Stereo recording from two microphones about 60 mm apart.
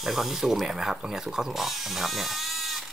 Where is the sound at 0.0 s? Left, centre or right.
Centre.